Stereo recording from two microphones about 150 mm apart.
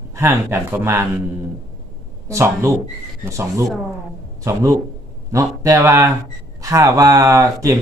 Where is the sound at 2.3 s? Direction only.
20° right (ahead or behind).